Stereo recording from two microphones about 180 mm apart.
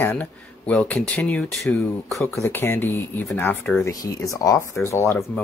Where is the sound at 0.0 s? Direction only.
10° left (ahead or behind).